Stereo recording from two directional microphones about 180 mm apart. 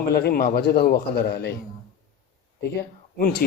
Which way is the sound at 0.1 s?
60° left (ahead or behind).